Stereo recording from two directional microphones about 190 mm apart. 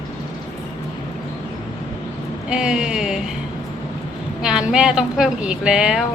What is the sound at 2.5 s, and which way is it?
Speech, 5° right (ahead or behind).